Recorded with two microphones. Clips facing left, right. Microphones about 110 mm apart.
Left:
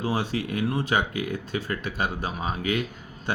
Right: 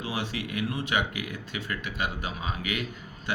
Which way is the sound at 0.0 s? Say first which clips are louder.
Left 6 dB; 40° left (ahead or behind).